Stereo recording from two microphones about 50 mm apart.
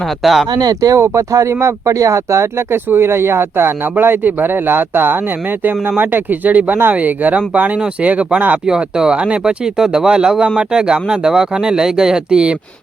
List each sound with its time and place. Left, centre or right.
0.2 s speech: centre
0.9 s speech: right
2.9 s a man's voice: right
8.6 s speech: centre